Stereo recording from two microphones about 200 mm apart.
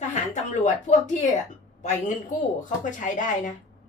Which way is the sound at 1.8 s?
35° left (ahead or behind).